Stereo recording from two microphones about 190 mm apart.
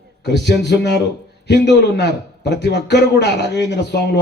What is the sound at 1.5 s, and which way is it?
A man's voice, 60° left (ahead or behind).